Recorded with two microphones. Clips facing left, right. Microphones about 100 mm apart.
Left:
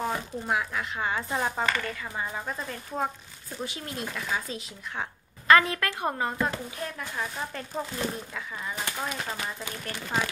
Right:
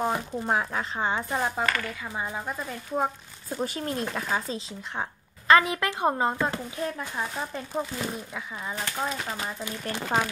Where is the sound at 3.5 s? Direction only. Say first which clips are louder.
Right 6 dB; 45° right (ahead or behind).